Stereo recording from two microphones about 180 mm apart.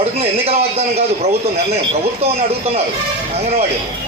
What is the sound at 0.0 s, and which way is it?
A man's voice, 35° right (ahead or behind).